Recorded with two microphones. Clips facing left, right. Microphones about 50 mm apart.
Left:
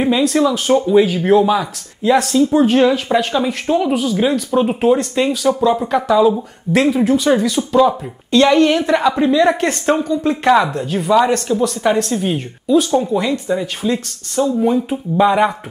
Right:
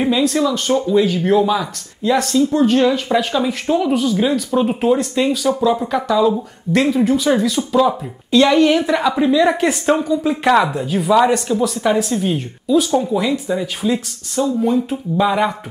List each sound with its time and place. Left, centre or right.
0.0 s speech: centre
0.4 s speech: centre
2.3 s speech: centre
2.9 s speech: centre
14.4 s speech: centre